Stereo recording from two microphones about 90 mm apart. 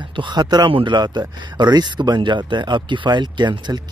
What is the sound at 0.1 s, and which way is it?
Speech, 60° right (ahead or behind).